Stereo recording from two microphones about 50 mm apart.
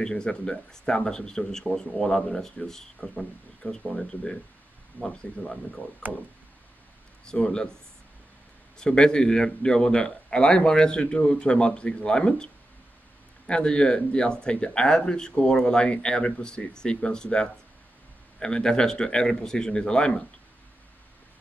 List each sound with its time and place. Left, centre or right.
0.0 s speech: centre
3.0 s speech: centre
6.0 s a sound: right
7.4 s speech: centre
8.7 s speech: centre
13.5 s speech: centre